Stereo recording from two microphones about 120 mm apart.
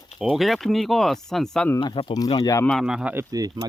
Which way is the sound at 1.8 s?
40° left (ahead or behind).